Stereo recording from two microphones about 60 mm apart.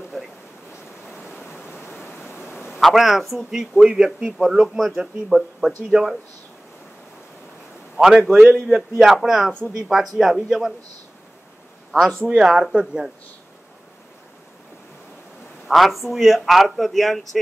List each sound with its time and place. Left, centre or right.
1.1 s waves: centre
2.0 s pink noise: centre
2.4 s a sound: centre
2.8 s a man's voice: centre
8.0 s a man's voice: centre
12.4 s a man's voice: centre
15.7 s speech: centre